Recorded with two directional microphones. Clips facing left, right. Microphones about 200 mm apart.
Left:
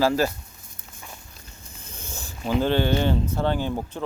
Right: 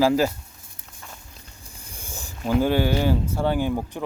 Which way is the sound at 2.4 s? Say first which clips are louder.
Right 1 dB; 10° right (ahead or behind).